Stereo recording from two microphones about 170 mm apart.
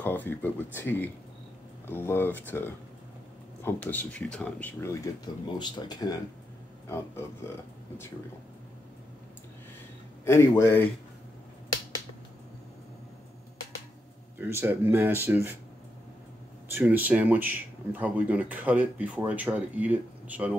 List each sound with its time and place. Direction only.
0.0 s speech: 10° left (ahead or behind)
10.2 s speech: 15° left (ahead or behind)
14.4 s speech: 10° right (ahead or behind)
16.7 s speech: 10° right (ahead or behind)